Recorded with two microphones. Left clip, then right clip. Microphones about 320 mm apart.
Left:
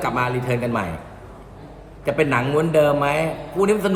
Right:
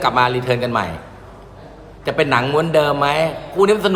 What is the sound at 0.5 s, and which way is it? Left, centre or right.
Speech, centre.